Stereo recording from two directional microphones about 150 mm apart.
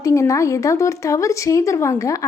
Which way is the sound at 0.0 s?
20° left (ahead or behind).